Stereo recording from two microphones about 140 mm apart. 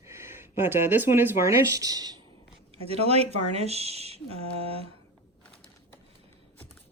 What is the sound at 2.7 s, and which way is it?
Speech, 45° right (ahead or behind).